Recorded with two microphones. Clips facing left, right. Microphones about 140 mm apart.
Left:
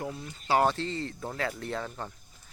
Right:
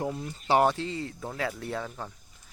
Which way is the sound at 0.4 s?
20° right (ahead or behind).